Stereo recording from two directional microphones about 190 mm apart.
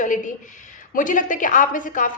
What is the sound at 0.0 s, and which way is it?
A woman's voice, 40° left (ahead or behind).